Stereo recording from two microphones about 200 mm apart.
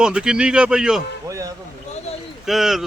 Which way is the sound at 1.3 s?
15° right (ahead or behind).